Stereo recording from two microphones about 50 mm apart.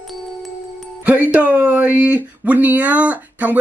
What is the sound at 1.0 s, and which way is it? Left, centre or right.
Speech, right.